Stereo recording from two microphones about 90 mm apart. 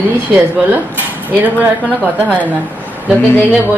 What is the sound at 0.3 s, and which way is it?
Cutlery, 20° right (ahead or behind).